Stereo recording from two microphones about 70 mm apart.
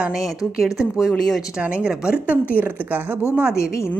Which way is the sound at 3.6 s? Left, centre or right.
Left.